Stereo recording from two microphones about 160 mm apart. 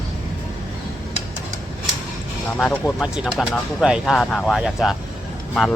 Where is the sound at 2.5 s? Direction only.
10° left (ahead or behind).